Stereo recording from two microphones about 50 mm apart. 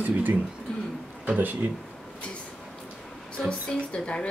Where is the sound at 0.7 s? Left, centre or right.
Centre.